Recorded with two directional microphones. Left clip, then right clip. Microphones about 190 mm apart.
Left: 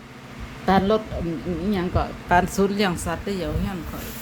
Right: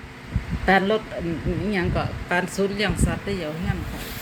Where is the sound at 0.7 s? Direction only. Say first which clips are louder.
Even; 5° left (ahead or behind).